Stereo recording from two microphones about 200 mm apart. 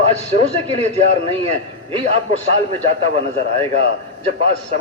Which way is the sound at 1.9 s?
30° right (ahead or behind).